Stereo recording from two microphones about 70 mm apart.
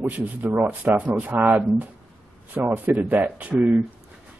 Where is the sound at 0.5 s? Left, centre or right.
Right.